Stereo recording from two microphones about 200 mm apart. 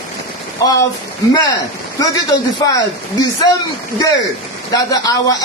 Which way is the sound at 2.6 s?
20° left (ahead or behind).